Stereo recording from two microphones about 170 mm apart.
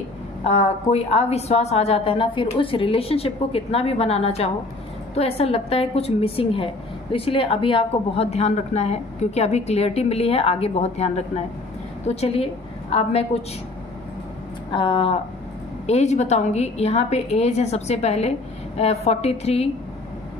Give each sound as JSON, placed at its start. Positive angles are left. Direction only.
{"t": 0.4, "sound": "a woman's voice", "side_deg": 40}
{"t": 14.7, "sound": "a woman's voice", "side_deg": 30}